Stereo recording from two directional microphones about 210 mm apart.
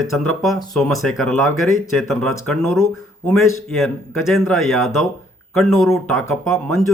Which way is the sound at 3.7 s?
Centre (ahead or behind).